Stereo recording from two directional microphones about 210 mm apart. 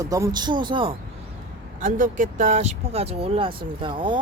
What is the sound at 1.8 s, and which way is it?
Speech, 40° right (ahead or behind).